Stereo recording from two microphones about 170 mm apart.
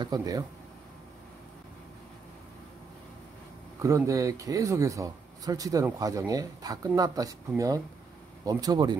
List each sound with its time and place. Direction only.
0.0 s speech: 20° right (ahead or behind)
3.8 s speech: 20° right (ahead or behind)